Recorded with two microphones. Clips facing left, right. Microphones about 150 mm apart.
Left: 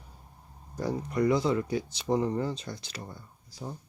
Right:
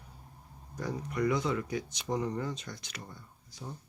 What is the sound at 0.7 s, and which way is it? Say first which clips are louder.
Speech: left 5 dB; 35° left (ahead or behind).